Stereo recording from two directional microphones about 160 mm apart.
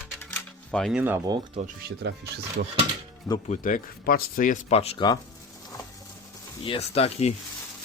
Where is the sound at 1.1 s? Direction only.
25° right (ahead or behind).